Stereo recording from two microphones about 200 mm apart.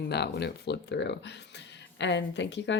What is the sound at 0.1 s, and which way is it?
Speech, 55° left (ahead or behind).